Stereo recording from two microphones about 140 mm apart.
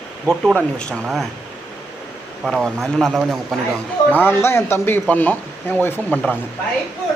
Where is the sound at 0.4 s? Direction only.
5° left (ahead or behind).